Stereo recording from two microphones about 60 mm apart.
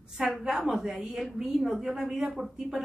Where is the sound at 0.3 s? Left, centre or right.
Centre.